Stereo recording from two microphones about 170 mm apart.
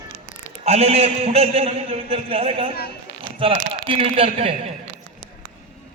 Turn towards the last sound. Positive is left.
turn(degrees=-35)  # may be behind; listen again after turning